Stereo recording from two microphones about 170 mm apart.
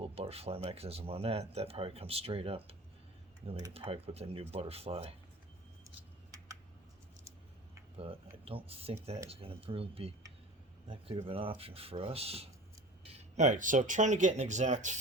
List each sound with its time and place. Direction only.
0.0 s speech: 35° right (ahead or behind)
5.8 s a sound: 20° right (ahead or behind)
8.4 s speech: 35° right (ahead or behind)